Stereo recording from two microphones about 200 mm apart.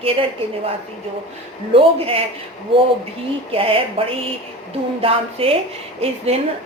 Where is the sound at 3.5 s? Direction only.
30° right (ahead or behind).